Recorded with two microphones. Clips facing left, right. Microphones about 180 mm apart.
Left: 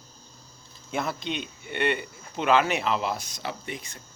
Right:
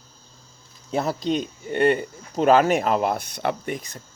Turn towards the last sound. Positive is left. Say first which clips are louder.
# right 7 dB
turn(degrees=-40)  # may be behind; listen again after turning